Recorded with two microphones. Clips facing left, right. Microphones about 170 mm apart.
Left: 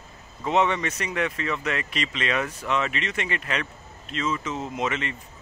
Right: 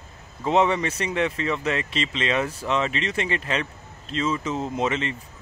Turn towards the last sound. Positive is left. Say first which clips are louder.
# right 3 dB
turn(degrees=-30)  # may be behind; listen again after turning